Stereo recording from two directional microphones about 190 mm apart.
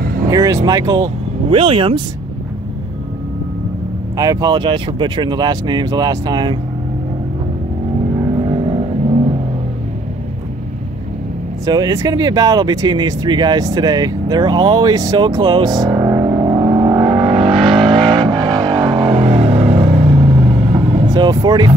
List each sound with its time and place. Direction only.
0.0 s vehicle: 50° right (ahead or behind)
0.3 s speech: 15° right (ahead or behind)
4.2 s speech: 20° right (ahead or behind)
8.2 s vehicle: 25° right (ahead or behind)
11.6 s a sound: 20° right (ahead or behind)